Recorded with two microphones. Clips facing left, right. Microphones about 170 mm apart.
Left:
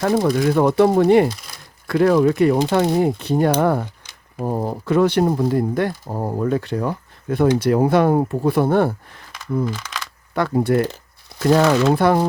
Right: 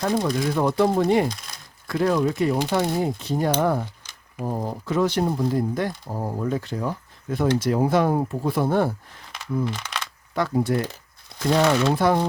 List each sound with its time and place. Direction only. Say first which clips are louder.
0.0 s speech: left 5 dB; 65° left (ahead or behind)
10.3 s speech: left 5 dB; 60° left (ahead or behind)